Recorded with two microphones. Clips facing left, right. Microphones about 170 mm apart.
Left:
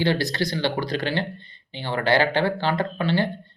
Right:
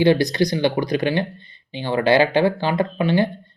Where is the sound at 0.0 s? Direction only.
20° right (ahead or behind).